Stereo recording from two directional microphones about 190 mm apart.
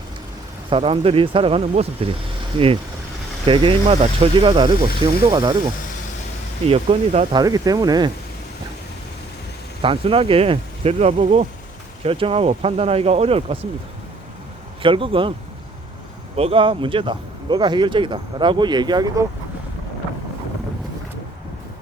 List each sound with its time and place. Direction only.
0.7 s speech: 30° right (ahead or behind)
3.4 s speech: 25° right (ahead or behind)
6.7 s speech: 30° right (ahead or behind)
7.3 s speech: 20° right (ahead or behind)
9.8 s speech: 30° right (ahead or behind)
14.8 s speech: 25° right (ahead or behind)
16.3 s speech: 30° right (ahead or behind)